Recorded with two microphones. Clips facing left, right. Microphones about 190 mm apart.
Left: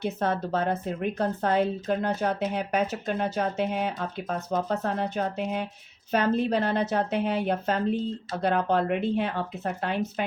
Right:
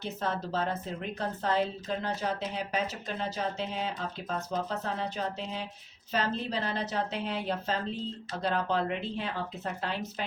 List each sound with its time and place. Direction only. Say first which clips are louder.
0.0 s a woman's voice: left 6 dB; 60° left (ahead or behind)